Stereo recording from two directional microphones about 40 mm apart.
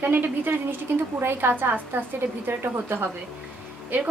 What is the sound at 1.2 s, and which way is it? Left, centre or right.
A woman's voice, right.